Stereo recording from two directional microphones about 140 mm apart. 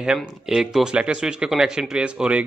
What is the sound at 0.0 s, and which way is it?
Speech, 5° right (ahead or behind).